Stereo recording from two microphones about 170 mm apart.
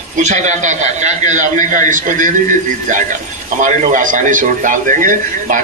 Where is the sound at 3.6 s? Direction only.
50° right (ahead or behind).